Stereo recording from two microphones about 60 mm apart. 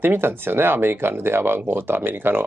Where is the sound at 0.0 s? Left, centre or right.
Right.